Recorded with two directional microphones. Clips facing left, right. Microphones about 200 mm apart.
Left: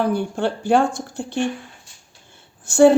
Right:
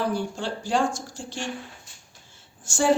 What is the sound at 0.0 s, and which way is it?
A woman's voice, 60° left (ahead or behind).